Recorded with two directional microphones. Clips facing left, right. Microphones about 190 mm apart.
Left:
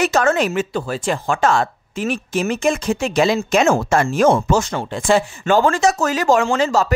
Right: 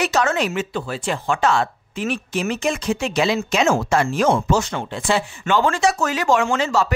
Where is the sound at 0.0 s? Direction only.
50° left (ahead or behind).